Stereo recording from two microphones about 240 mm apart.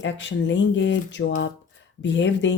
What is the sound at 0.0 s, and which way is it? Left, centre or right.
Speech, left.